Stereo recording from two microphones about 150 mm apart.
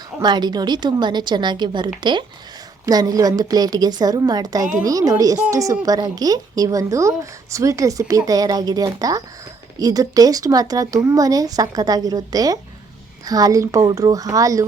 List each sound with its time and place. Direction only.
0.2 s speech: 30° right (ahead or behind)